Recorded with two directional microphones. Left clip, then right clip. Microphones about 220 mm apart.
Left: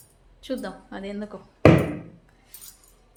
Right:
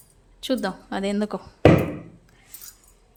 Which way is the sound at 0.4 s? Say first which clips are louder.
Right 6 dB; 50° right (ahead or behind).